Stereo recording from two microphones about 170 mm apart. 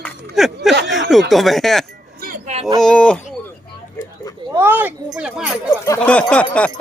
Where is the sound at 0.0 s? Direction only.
Centre (ahead or behind).